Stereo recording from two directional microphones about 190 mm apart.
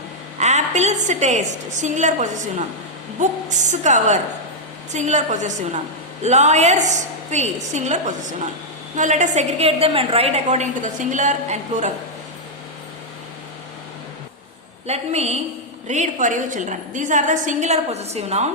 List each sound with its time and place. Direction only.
0.3 s a woman's voice: 35° right (ahead or behind)
14.8 s a woman's voice: 35° right (ahead or behind)